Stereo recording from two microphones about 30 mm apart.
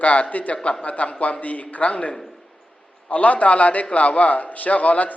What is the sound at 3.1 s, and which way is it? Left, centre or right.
A man's voice, left.